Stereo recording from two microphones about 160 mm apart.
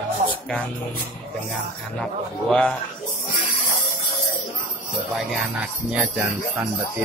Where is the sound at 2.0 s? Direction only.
5° left (ahead or behind).